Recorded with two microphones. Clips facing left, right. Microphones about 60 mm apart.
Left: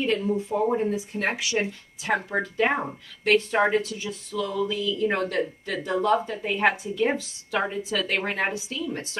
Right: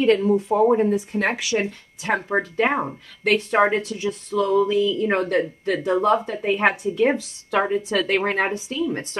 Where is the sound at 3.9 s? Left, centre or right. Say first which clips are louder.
Right 7 dB; right.